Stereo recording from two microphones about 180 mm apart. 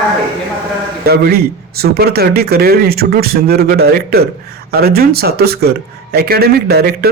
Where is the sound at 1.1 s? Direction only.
60° right (ahead or behind).